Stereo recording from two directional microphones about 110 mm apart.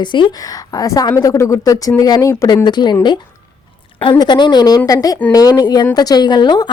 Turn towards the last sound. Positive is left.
turn(degrees=40)  # may be behind; listen again after turning